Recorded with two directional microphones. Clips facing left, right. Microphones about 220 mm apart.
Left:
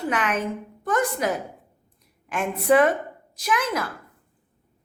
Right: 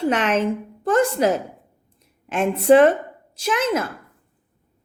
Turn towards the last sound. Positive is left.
turn(degrees=-25)  # may be behind; listen again after turning